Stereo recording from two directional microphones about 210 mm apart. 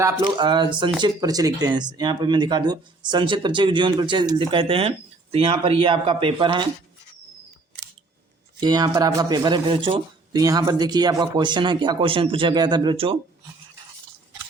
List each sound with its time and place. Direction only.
0.0 s speech: 20° right (ahead or behind)
8.6 s speech: 20° right (ahead or behind)